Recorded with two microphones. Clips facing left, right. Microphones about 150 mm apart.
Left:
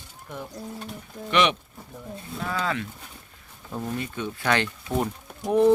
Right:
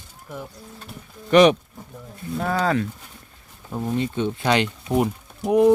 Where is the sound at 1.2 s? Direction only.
40° right (ahead or behind).